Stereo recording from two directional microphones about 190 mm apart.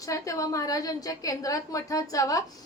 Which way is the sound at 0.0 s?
15° left (ahead or behind).